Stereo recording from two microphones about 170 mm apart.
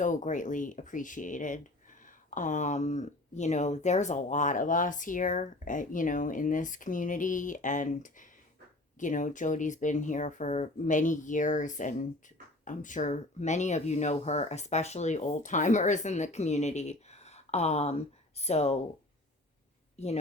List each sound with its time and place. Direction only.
0.0 s speech: 50° left (ahead or behind)